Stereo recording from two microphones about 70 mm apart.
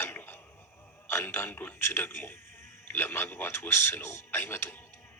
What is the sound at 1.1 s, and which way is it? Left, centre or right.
A man's voice, left.